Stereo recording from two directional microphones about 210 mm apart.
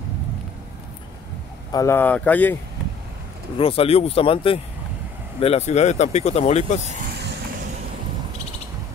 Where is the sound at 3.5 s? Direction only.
25° left (ahead or behind).